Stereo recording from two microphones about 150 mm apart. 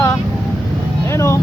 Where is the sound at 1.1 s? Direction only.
20° left (ahead or behind).